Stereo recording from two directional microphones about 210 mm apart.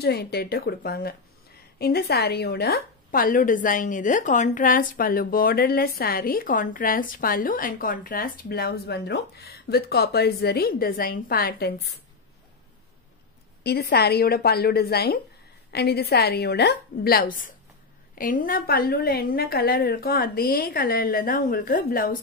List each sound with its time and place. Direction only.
0.0 s a woman's voice: 50° left (ahead or behind)
13.7 s a woman's voice: 50° left (ahead or behind)